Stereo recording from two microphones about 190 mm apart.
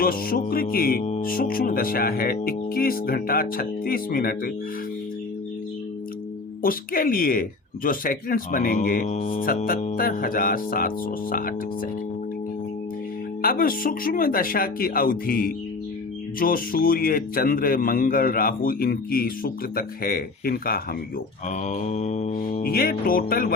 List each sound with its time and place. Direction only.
0.0 s speech: 50° left (ahead or behind)
6.6 s speech: 50° left (ahead or behind)
13.4 s speech: 50° left (ahead or behind)
21.7 s speech: 40° left (ahead or behind)